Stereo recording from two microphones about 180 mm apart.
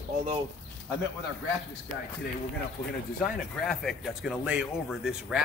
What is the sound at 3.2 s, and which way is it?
Speech, centre (ahead or behind).